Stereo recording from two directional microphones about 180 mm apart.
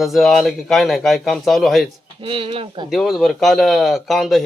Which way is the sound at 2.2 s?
30° right (ahead or behind).